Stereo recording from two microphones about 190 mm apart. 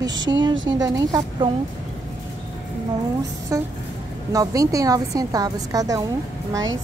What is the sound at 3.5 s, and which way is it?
A woman's voice, 15° right (ahead or behind).